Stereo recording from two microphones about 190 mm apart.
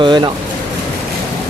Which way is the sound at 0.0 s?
25° right (ahead or behind).